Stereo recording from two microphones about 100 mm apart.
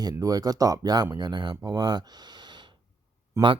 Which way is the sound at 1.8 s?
45° right (ahead or behind).